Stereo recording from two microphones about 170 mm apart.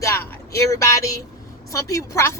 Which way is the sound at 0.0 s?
15° left (ahead or behind).